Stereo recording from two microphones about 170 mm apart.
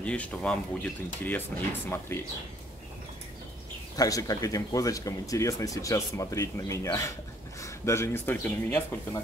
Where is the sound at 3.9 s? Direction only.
20° left (ahead or behind).